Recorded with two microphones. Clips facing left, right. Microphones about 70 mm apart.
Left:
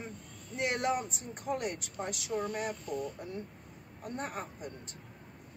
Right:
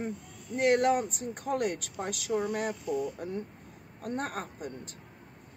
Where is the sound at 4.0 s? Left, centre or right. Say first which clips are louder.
Right 4 dB; right.